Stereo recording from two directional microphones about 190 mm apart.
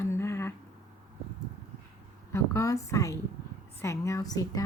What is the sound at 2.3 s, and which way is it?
A woman's voice, 15° left (ahead or behind).